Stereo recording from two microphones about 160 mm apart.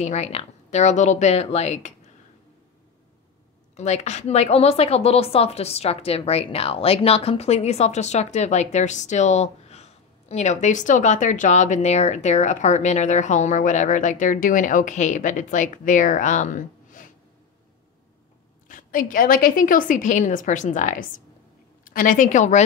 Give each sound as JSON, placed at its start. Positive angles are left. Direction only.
{"t": 0.0, "sound": "a woman's voice", "side_deg": 45}
{"t": 3.7, "sound": "a woman's voice", "side_deg": 45}
{"t": 18.7, "sound": "a woman's voice", "side_deg": 55}